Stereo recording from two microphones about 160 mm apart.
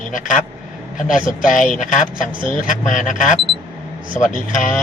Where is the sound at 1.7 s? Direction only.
50° left (ahead or behind).